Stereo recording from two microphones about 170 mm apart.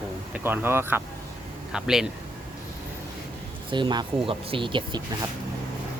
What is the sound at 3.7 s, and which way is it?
Speech, 25° right (ahead or behind).